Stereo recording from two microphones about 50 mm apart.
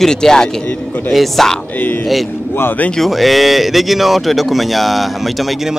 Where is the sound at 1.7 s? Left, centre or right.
Left.